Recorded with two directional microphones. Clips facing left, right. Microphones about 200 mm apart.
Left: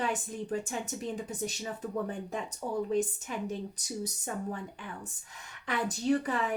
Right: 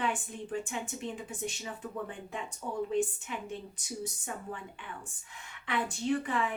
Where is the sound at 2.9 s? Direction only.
40° left (ahead or behind).